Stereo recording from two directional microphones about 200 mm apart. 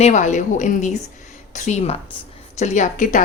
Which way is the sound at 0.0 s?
35° left (ahead or behind).